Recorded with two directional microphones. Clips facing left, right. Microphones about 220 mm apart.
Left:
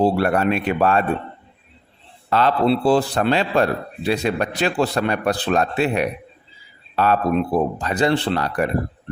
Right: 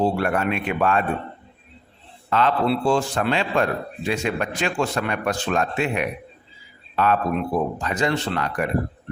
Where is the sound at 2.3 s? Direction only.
35° left (ahead or behind).